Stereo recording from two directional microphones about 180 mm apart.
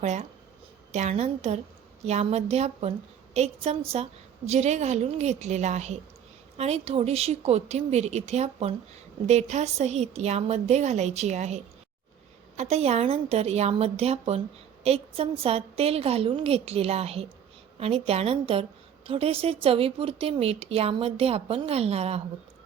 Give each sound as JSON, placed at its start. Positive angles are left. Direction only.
{"t": 0.0, "sound": "speech", "side_deg": -40}